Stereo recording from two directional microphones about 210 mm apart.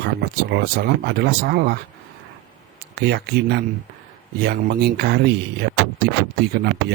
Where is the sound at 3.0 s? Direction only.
50° right (ahead or behind).